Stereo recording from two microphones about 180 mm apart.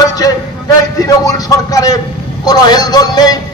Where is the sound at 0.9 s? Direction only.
20° left (ahead or behind).